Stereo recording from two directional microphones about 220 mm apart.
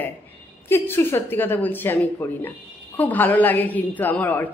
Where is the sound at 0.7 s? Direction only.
10° left (ahead or behind).